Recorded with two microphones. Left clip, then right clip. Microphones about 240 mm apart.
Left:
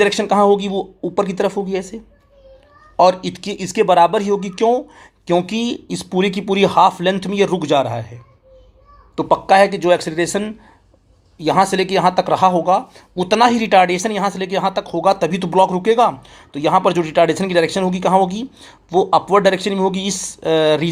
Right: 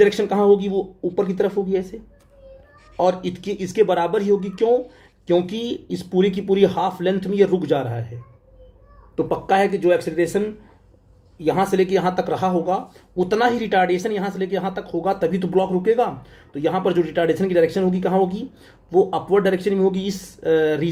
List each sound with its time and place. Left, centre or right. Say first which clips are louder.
0.0 s speech: left 3 dB; left
3.0 s speech: left 7 dB; left
11.5 s speech: left 5 dB; left